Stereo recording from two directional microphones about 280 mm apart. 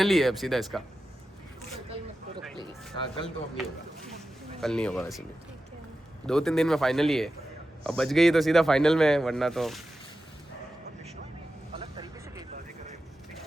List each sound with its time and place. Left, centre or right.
0.0 s speech: centre
3.6 s speech: centre
6.2 s speech: centre
11.7 s vehicle: centre